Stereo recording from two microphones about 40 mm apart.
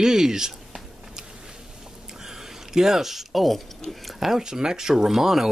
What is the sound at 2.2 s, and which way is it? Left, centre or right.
Speech, centre.